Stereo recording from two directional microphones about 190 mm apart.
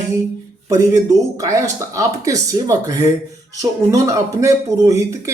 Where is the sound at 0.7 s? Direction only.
15° right (ahead or behind).